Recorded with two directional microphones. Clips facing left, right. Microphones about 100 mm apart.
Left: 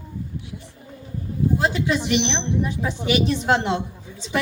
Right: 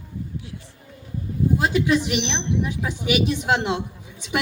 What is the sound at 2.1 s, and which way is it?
A woman's voice, 10° right (ahead or behind).